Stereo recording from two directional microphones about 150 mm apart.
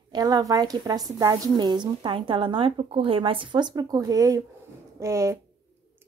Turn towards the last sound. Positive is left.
turn(degrees=-20)  # may be behind; listen again after turning